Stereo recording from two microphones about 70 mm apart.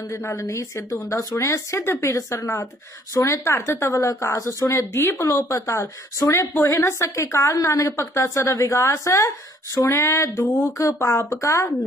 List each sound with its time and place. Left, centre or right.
0.1 s speech: left
5.3 s speech: left
6.5 s a sound: left
6.9 s speech: left
9.8 s a sound: left
10.8 s speech: left